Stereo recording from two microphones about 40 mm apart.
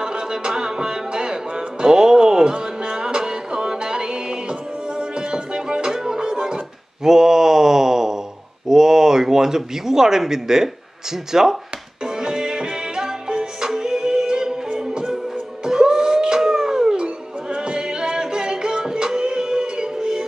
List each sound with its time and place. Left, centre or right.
0.0 s music: centre
8.6 s a sound: centre
11.3 s speech: centre
12.0 s music: centre